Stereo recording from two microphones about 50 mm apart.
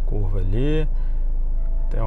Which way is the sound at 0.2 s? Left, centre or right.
Centre.